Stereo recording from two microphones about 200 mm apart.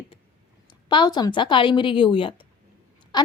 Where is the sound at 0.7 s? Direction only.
25° left (ahead or behind).